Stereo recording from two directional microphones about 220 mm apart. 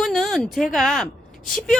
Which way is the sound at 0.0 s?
Centre (ahead or behind).